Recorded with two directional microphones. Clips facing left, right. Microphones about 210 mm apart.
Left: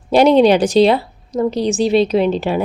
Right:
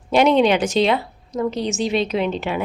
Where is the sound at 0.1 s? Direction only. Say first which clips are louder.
Left 5 dB; 35° left (ahead or behind).